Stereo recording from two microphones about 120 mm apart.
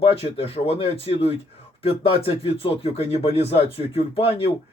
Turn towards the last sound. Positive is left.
turn(degrees=55)  # may be behind; listen again after turning